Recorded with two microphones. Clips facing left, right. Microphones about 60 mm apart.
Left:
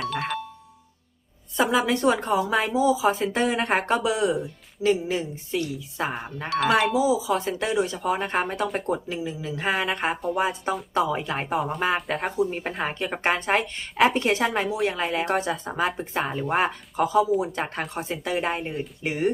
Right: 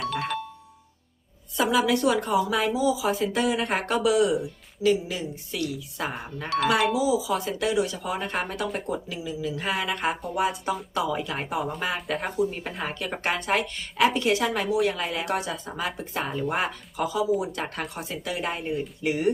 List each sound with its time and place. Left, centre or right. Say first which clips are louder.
0.0 s music: even; centre
1.5 s a woman's voice: even; left
6.5 s speech: left 1 dB; centre
6.9 s a woman's voice: left 2 dB; left
11.9 s speech: left 2 dB; centre
12.4 s a woman's voice: left 2 dB; left
16.2 s speech: left 1 dB; centre
16.5 s a woman's voice: left 4 dB; left